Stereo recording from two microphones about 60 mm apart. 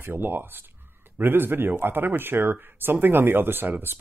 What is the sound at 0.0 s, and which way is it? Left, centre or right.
Speech, right.